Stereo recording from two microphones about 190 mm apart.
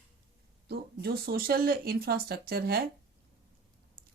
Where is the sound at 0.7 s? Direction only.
55° right (ahead or behind).